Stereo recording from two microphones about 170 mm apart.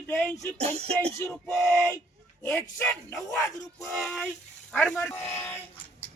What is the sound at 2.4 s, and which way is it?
Speech, 15° left (ahead or behind).